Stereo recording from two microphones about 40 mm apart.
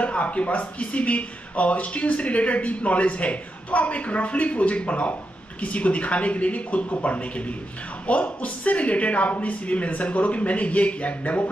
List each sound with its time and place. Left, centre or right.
0.0 s speech: left